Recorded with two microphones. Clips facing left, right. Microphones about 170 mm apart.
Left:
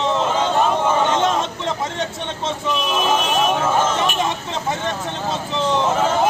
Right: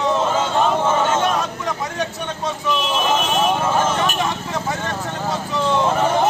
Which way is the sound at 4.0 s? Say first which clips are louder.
Even; 20° left (ahead or behind).